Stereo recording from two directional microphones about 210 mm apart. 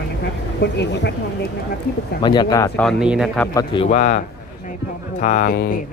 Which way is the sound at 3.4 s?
15° left (ahead or behind).